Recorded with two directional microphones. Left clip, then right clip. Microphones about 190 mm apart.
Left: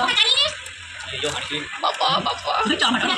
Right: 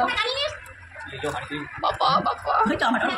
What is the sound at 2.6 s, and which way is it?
Speech, 55° right (ahead or behind).